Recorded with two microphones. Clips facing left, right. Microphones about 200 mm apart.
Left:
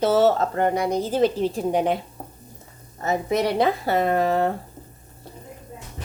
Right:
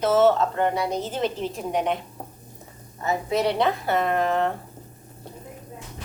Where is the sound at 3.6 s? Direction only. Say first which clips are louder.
Left 2 dB; 35° left (ahead or behind).